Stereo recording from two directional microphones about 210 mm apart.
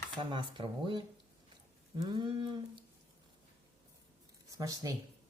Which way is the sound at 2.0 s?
20° right (ahead or behind).